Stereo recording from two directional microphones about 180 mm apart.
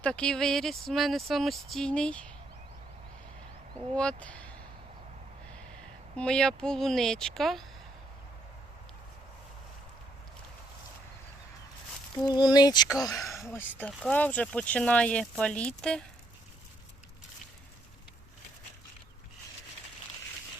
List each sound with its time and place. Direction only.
0.0 s speech: 5° left (ahead or behind)
3.9 s speech: 5° left (ahead or behind)
6.1 s speech: 5° left (ahead or behind)
12.2 s speech: 25° left (ahead or behind)
13.0 s speech: centre (ahead or behind)
13.5 s speech: 10° left (ahead or behind)